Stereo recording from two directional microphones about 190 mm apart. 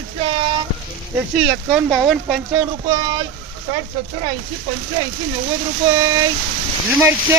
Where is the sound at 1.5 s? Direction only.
5° right (ahead or behind).